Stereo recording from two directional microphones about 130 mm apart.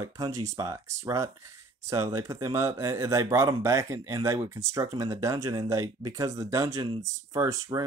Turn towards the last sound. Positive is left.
turn(degrees=-25)  # may be behind; listen again after turning